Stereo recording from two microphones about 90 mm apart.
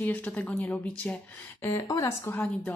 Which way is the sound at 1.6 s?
30° left (ahead or behind).